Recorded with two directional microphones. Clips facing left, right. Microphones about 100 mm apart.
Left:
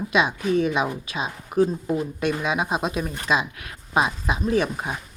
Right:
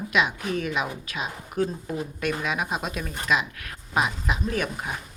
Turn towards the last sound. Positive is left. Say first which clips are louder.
# left 5 dB
turn(degrees=25)  # may be behind; listen again after turning